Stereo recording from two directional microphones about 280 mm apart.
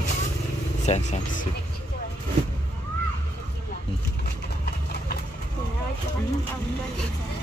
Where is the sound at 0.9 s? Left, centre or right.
Left.